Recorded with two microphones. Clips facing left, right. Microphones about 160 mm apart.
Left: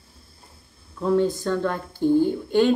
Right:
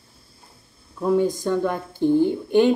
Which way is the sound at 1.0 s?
10° right (ahead or behind).